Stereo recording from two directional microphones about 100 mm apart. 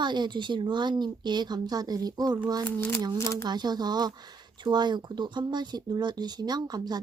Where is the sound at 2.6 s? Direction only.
20° left (ahead or behind).